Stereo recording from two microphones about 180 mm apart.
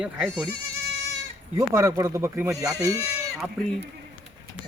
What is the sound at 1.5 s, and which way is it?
Speech, 15° right (ahead or behind).